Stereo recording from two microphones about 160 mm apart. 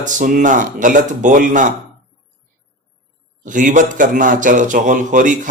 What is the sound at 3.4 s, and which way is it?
A man's voice, 55° right (ahead or behind).